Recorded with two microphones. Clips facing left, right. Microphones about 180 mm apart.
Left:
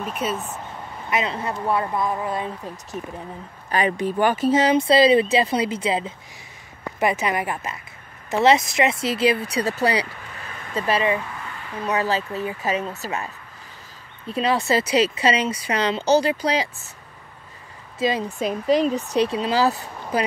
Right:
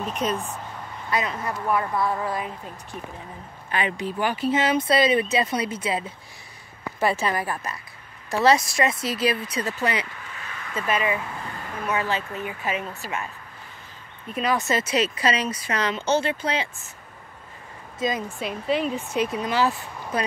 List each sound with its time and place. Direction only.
0.0 s speech: 5° left (ahead or behind)
1.1 s a woman's voice: 25° left (ahead or behind)
3.7 s speech: 45° left (ahead or behind)
4.7 s a woman's voice: 25° left (ahead or behind)
14.2 s speech: 30° left (ahead or behind)
17.9 s a woman's voice: 30° left (ahead or behind)
18.4 s speech: 40° left (ahead or behind)